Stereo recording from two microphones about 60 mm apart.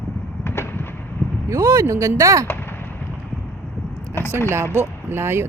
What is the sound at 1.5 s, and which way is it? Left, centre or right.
Speech, right.